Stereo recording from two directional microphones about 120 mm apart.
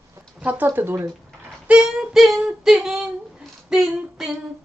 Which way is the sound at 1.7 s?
5° right (ahead or behind).